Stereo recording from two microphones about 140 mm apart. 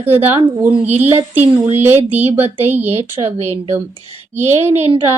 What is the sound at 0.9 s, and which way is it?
Speech, 50° right (ahead or behind).